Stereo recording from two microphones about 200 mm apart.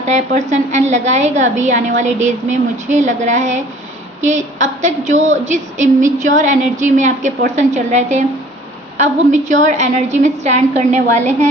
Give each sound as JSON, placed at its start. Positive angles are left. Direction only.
{"t": 0.0, "sound": "a woman's voice", "side_deg": -35}